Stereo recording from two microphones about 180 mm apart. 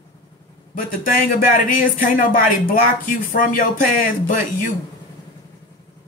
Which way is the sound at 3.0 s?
50° left (ahead or behind).